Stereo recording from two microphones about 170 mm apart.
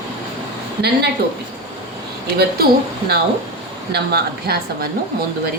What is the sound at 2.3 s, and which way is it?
Speech, 65° right (ahead or behind).